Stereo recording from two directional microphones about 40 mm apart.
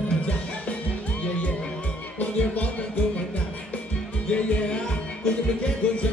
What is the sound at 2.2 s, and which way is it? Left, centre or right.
Music, left.